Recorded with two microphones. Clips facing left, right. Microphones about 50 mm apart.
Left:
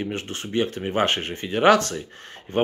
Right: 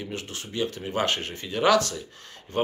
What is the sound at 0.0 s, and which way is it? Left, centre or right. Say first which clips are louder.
Speech: left 5 dB; left.